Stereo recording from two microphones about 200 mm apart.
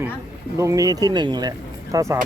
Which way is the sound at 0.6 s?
15° right (ahead or behind).